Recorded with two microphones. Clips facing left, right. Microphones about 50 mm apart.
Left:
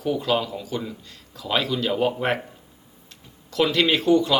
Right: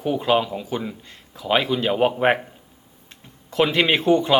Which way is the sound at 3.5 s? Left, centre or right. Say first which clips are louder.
Right 2 dB; right.